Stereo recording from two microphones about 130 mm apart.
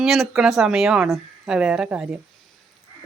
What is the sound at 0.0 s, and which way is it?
Speech, centre (ahead or behind).